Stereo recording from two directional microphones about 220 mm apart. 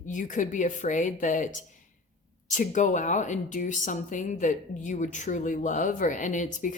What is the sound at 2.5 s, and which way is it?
A woman's voice, 35° left (ahead or behind).